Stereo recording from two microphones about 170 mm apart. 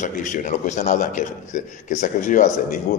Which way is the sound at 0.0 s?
45° left (ahead or behind).